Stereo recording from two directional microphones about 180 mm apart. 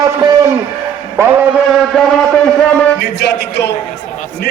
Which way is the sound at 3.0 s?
65° left (ahead or behind).